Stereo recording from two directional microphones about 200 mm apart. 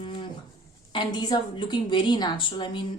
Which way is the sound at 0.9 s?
20° left (ahead or behind).